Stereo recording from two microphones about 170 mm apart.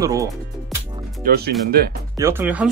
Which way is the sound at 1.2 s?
65° right (ahead or behind).